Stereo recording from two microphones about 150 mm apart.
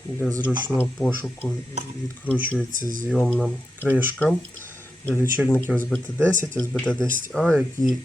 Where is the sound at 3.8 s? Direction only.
10° right (ahead or behind).